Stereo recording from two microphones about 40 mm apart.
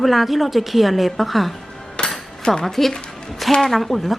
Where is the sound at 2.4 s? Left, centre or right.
Centre.